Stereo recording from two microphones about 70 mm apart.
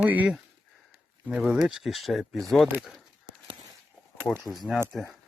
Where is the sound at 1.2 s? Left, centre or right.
Centre.